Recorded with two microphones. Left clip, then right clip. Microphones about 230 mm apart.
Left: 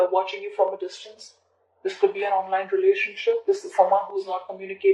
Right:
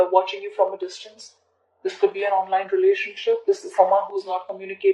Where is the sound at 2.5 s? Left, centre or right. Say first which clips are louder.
Right 2 dB; right.